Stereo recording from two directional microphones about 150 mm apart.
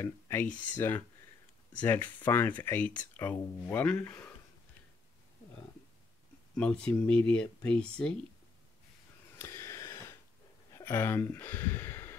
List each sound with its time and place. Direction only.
0.0 s speech: 15° left (ahead or behind)
6.5 s speech: 10° left (ahead or behind)
9.4 s a sound: 20° left (ahead or behind)
10.7 s speech: 15° left (ahead or behind)